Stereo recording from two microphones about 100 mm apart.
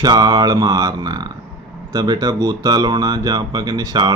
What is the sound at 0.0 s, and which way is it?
Speech, 40° right (ahead or behind).